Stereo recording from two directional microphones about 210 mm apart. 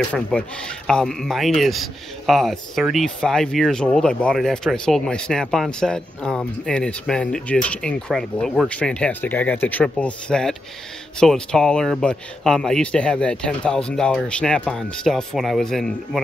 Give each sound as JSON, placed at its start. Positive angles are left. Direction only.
{"t": 0.1, "sound": "speech", "side_deg": 5}